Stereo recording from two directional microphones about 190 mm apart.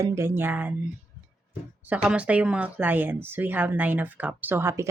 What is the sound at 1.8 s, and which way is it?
A woman's voice, 5° right (ahead or behind).